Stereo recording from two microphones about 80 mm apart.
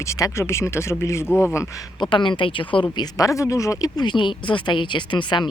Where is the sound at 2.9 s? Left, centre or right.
Left.